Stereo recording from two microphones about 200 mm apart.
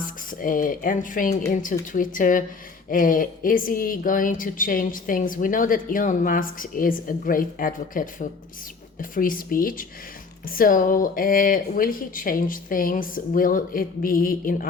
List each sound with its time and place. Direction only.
0.3 s a woman's voice: 45° left (ahead or behind)